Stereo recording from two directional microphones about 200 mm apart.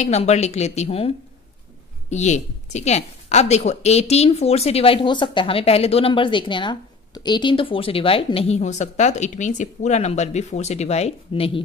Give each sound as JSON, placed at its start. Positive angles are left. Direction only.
{"t": 0.0, "sound": "a woman's voice", "side_deg": 35}